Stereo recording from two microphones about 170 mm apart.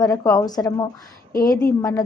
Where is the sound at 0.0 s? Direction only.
20° left (ahead or behind).